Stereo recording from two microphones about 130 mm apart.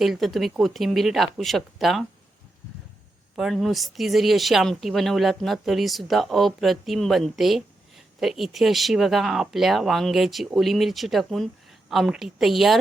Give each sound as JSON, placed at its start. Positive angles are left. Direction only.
{"t": 0.0, "sound": "speech", "side_deg": 0}
{"t": 3.3, "sound": "speech", "side_deg": 0}